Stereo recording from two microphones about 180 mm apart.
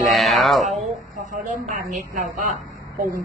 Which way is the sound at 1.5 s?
45° right (ahead or behind).